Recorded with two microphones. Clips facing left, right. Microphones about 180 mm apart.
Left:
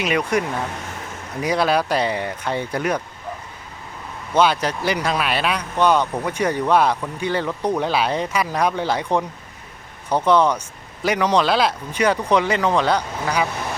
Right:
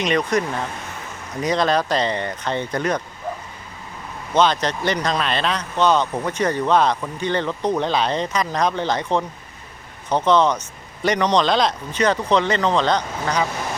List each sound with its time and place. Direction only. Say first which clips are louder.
0.0 s speech: right 1 dB; 10° left (ahead or behind)
4.4 s speech: even; 10° left (ahead or behind)